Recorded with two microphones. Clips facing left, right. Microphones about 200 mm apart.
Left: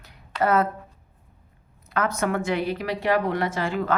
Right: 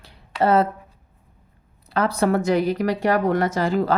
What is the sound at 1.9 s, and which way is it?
A woman's voice, 35° right (ahead or behind).